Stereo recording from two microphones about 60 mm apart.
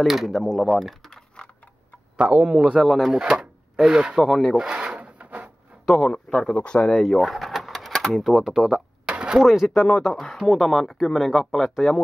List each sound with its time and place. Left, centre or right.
0.0 s speech: centre
1.1 s typing: centre
2.1 s speech: centre
2.8 s speech: centre
3.2 s speech: centre
4.2 s speech: centre
4.6 s wood: centre
5.9 s speech: centre
6.5 s speech: left
6.8 s speech: centre
9.1 s a sound: centre
9.4 s speech: centre